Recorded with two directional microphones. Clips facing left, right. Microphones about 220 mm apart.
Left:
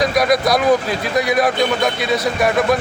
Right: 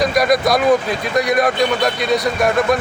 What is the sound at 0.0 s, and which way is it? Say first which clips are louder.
A man's voice: right 1 dB; centre (ahead or behind).